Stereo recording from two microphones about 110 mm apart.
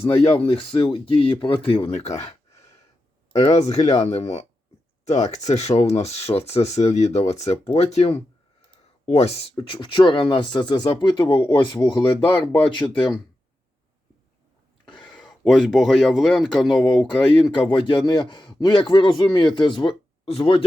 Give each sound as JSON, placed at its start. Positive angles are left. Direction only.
{"t": 0.3, "sound": "speech", "side_deg": 55}
{"t": 1.9, "sound": "speech", "side_deg": 85}
{"t": 3.3, "sound": "speech", "side_deg": 85}
{"t": 5.0, "sound": "speech", "side_deg": 90}
{"t": 9.6, "sound": "speech", "side_deg": 45}
{"t": 15.0, "sound": "speech", "side_deg": 5}
{"t": 17.5, "sound": "speech", "side_deg": 45}